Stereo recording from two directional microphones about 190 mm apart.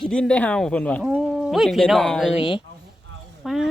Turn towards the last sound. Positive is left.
turn(degrees=0)  # may be behind; listen again after turning